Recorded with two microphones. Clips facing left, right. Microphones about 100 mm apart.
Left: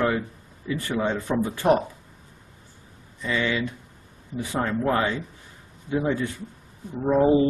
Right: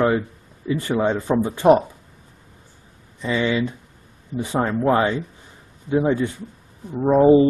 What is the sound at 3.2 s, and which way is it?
Speech, 25° right (ahead or behind).